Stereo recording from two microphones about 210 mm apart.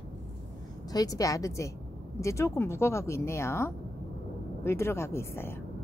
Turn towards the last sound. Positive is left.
turn(degrees=10)  # may be behind; listen again after turning